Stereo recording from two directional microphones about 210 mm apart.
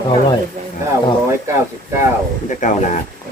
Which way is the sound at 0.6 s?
35° right (ahead or behind).